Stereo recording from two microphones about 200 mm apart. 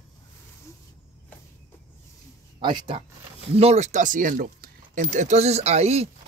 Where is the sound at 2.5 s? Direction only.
25° right (ahead or behind).